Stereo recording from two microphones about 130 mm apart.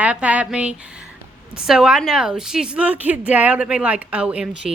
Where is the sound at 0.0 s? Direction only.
10° right (ahead or behind).